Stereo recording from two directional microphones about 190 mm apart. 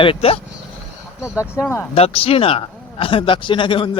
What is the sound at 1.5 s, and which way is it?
Speech, 10° left (ahead or behind).